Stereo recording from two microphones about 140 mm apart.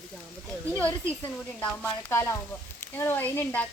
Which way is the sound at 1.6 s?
15° left (ahead or behind).